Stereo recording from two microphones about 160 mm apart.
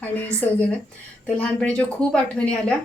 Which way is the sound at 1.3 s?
5° left (ahead or behind).